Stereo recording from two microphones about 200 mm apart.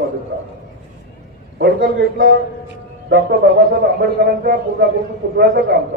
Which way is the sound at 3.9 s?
55° right (ahead or behind).